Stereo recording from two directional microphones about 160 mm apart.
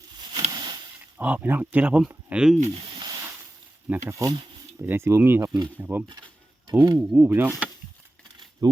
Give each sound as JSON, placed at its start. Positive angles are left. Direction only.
{"t": 0.5, "sound": "a sound", "side_deg": -25}
{"t": 1.2, "sound": "speech", "side_deg": -10}
{"t": 2.6, "sound": "snake", "side_deg": -35}
{"t": 3.8, "sound": "speech", "side_deg": -15}
{"t": 6.7, "sound": "speech", "side_deg": -25}
{"t": 7.1, "sound": "speech", "side_deg": -10}
{"t": 8.6, "sound": "speech", "side_deg": -20}